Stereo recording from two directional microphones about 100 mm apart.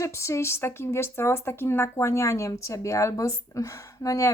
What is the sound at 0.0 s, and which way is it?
A woman's voice, 30° left (ahead or behind).